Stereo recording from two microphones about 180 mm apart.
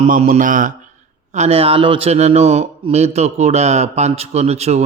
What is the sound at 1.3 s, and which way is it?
A man's voice, 35° right (ahead or behind).